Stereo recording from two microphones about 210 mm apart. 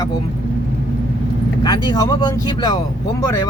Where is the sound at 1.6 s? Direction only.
20° left (ahead or behind).